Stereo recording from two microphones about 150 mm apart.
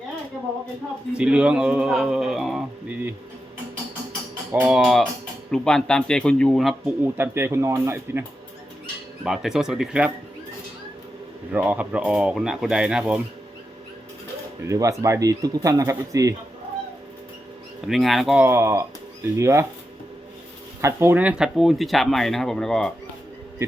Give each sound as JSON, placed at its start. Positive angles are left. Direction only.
{"t": 1.2, "sound": "speech", "side_deg": -5}
{"t": 4.6, "sound": "speech", "side_deg": 0}
{"t": 7.0, "sound": "speech", "side_deg": -15}
{"t": 9.2, "sound": "speech", "side_deg": -5}
{"t": 11.5, "sound": "speech", "side_deg": -10}
{"t": 14.6, "sound": "speech", "side_deg": -20}
{"t": 17.8, "sound": "speech", "side_deg": 0}
{"t": 18.4, "sound": "speech", "side_deg": -15}
{"t": 20.8, "sound": "speech", "side_deg": -15}